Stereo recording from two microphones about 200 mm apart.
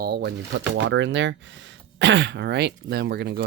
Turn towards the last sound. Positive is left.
turn(degrees=-55)  # may be behind; listen again after turning